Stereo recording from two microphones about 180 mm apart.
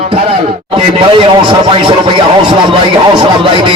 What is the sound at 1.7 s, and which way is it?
Speech, 30° right (ahead or behind).